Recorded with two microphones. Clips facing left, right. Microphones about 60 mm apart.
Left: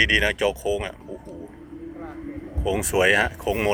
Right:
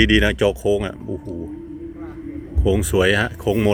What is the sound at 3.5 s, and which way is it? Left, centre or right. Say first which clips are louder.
Speech: right 8 dB; left.